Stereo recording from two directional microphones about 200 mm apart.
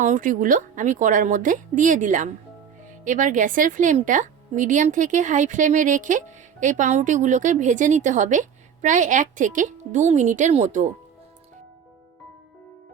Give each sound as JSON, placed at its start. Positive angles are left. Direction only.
{"t": 0.0, "sound": "a woman's voice", "side_deg": -40}